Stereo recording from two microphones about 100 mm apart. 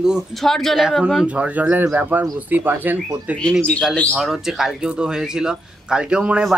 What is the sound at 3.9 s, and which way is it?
Speech, 10° left (ahead or behind).